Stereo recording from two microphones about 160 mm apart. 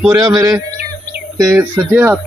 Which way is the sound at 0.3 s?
20° right (ahead or behind).